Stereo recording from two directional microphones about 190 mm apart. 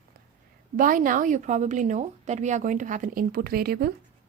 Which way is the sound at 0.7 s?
45° right (ahead or behind).